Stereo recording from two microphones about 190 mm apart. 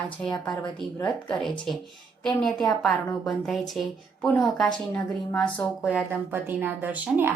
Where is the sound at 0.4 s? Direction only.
20° left (ahead or behind).